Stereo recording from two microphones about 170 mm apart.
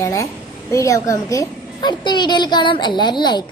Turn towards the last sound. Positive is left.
turn(degrees=25)  # may be behind; listen again after turning